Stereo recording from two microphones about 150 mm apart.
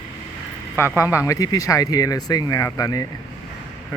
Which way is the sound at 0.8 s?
15° left (ahead or behind).